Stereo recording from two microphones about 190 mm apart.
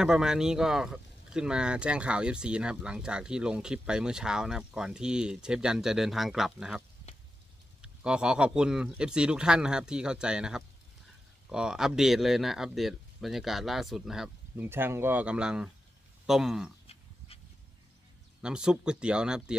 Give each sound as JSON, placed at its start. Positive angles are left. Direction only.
{"t": 0.0, "sound": "speech", "side_deg": -5}
{"t": 7.8, "sound": "speech", "side_deg": -5}
{"t": 16.8, "sound": "dog", "side_deg": 30}
{"t": 18.4, "sound": "speech", "side_deg": -5}